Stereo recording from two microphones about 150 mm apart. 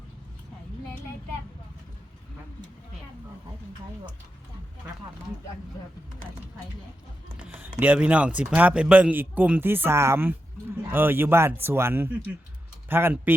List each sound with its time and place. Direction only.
7.3 s speech: 10° right (ahead or behind)